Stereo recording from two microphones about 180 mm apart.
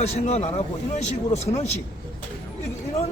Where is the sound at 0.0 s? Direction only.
35° left (ahead or behind).